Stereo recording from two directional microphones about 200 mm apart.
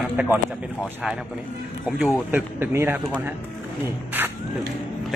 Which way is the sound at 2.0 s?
5° right (ahead or behind).